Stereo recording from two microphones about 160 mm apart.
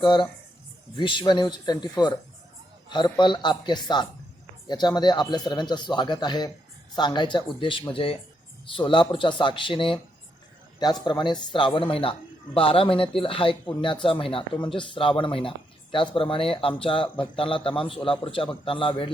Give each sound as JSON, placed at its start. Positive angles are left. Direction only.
{"t": 0.0, "sound": "speech", "side_deg": 30}